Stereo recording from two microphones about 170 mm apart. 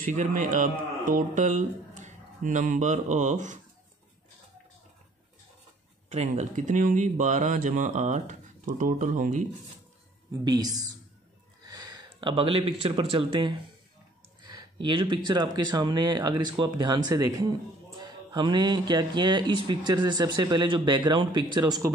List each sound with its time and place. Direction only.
0.0 s speech: 50° right (ahead or behind)
6.0 s speech: 40° right (ahead or behind)
10.4 s speech: 25° right (ahead or behind)